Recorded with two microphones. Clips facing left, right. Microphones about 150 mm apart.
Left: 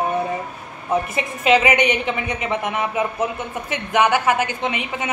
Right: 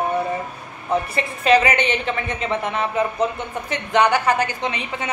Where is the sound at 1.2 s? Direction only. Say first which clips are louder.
Right 1 dB; 15° left (ahead or behind).